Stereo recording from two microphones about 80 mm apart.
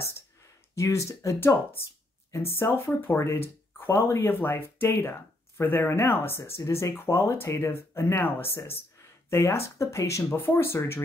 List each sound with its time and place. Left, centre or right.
0.7 s speech: left